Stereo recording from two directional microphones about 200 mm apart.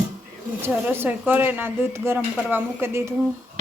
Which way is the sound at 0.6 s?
10° right (ahead or behind).